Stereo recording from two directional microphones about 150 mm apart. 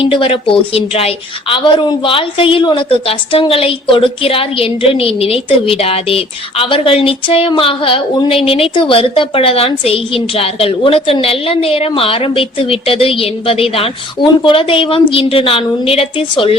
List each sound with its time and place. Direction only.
0.0 s a woman's voice: 35° left (ahead or behind)